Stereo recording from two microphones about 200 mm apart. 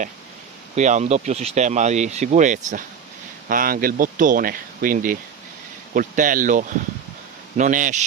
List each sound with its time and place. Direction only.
0.8 s speech: 35° right (ahead or behind)